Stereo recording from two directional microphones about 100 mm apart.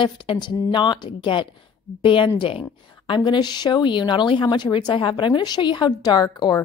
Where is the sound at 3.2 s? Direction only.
45° left (ahead or behind).